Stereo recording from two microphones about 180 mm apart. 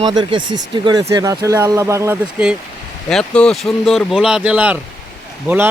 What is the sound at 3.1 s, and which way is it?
Speech, 5° left (ahead or behind).